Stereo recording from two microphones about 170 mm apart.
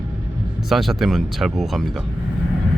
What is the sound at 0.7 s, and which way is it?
Speech, centre (ahead or behind).